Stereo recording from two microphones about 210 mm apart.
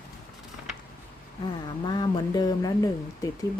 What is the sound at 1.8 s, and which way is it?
Speech, 20° left (ahead or behind).